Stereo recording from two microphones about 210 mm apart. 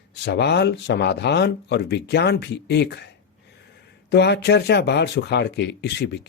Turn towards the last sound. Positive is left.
turn(degrees=55)  # may be behind; listen again after turning